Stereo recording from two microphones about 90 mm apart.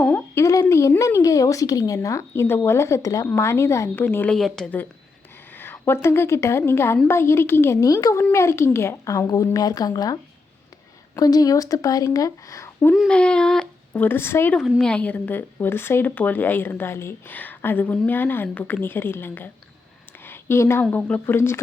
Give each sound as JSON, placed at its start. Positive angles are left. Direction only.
{"t": 0.3, "sound": "a woman's voice", "side_deg": 30}
{"t": 4.0, "sound": "speech", "side_deg": 20}
{"t": 4.4, "sound": "a woman's voice", "side_deg": 5}
{"t": 5.5, "sound": "a woman's voice", "side_deg": 25}
{"t": 11.2, "sound": "a woman's voice", "side_deg": 45}
{"t": 13.1, "sound": "speech", "side_deg": 15}
{"t": 14.0, "sound": "speech", "side_deg": 25}
{"t": 14.8, "sound": "speech", "side_deg": 10}
{"t": 20.2, "sound": "a sound", "side_deg": 25}
{"t": 20.9, "sound": "speech", "side_deg": 20}